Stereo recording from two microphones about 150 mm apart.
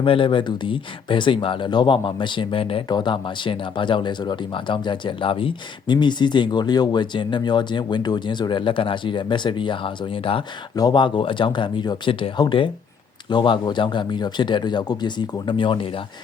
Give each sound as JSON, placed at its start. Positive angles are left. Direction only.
{"t": 0.0, "sound": "speech", "side_deg": 35}